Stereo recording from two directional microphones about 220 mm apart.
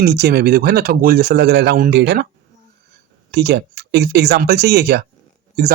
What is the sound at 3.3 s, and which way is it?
Speech, 50° right (ahead or behind).